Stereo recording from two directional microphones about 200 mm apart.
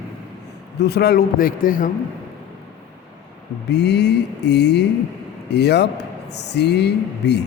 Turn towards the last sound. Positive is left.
turn(degrees=55)  # may be behind; listen again after turning